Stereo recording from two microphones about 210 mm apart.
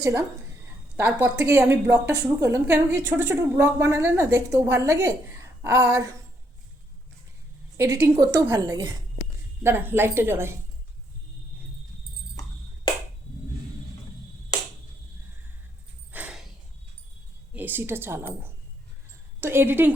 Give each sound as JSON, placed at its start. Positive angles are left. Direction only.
{"t": 0.0, "sound": "a woman's voice", "side_deg": -15}
{"t": 7.8, "sound": "a woman's voice", "side_deg": -15}
{"t": 16.1, "sound": "a sound", "side_deg": -5}
{"t": 17.5, "sound": "speech", "side_deg": -10}
{"t": 19.4, "sound": "a woman's voice", "side_deg": -10}